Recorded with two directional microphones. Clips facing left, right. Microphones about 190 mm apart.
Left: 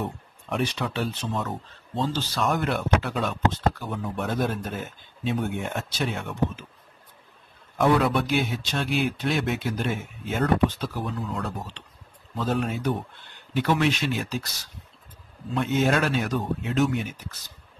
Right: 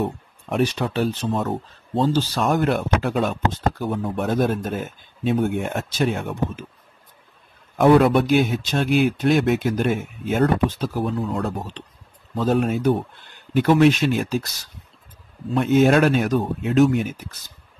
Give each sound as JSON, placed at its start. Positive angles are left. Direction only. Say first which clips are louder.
{"t": 0.5, "sound": "a man's voice", "louder": "right 6 dB", "side_deg": -40}
{"t": 3.9, "sound": "a man's voice", "louder": "right 6 dB", "side_deg": -55}
{"t": 7.7, "sound": "a man's voice", "louder": "right 7 dB", "side_deg": -50}
{"t": 15.5, "sound": "a man's voice", "louder": "right 7 dB", "side_deg": -55}